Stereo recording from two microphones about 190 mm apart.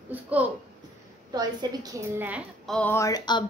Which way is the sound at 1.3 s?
20° right (ahead or behind).